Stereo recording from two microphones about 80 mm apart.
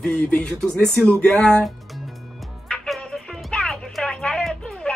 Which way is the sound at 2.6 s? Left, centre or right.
Centre.